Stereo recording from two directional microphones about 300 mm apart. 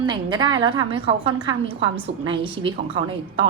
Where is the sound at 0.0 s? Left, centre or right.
Centre.